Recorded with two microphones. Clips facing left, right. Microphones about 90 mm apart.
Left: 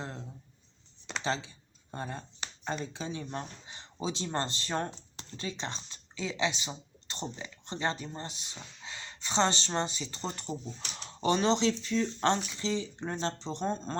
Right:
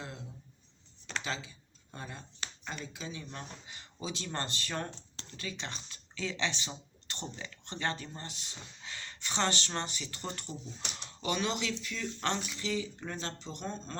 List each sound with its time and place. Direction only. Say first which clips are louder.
1.2 s speech: left 6 dB; 30° left (ahead or behind)
11.2 s speech: left 7 dB; 35° left (ahead or behind)